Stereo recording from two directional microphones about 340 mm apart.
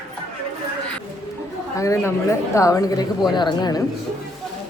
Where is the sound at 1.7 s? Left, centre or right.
Centre.